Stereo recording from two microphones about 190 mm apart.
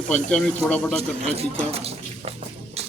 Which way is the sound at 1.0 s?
30° right (ahead or behind).